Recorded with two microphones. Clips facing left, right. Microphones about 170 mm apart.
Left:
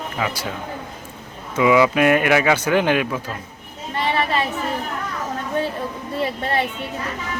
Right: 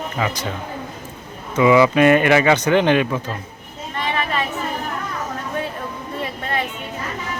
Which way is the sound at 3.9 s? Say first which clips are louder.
Left 2 dB; 35° left (ahead or behind).